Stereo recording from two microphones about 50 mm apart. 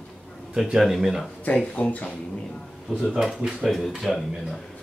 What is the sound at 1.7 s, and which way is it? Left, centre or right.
Speech, left.